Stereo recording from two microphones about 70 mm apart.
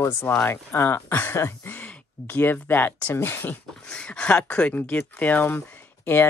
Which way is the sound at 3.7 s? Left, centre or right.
Centre.